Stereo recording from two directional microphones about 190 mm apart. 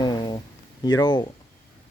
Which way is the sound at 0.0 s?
20° left (ahead or behind).